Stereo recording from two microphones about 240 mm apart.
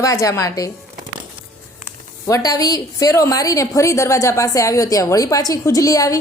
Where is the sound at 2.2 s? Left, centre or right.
Centre.